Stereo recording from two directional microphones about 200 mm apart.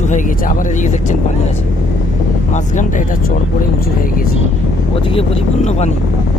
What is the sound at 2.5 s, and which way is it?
Speech, 40° left (ahead or behind).